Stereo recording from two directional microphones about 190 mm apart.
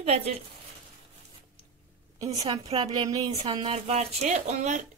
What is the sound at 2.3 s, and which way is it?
A woman's voice, 35° right (ahead or behind).